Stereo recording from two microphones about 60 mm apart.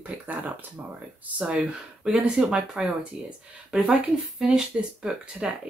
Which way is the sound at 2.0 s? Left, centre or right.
Centre.